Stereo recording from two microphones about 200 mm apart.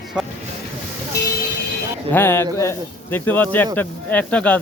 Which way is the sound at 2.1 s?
10° left (ahead or behind).